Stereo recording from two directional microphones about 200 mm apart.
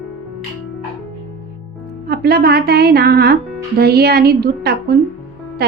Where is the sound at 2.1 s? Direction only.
50° right (ahead or behind).